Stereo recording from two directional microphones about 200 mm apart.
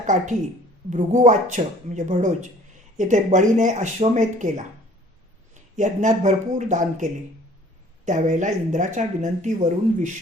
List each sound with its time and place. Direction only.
0.0 s speech: 40° right (ahead or behind)
5.7 s speech: 40° right (ahead or behind)